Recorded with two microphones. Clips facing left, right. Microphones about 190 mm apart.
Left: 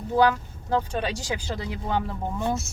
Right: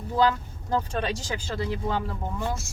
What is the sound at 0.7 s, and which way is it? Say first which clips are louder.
Speech: left 1 dB; 10° left (ahead or behind).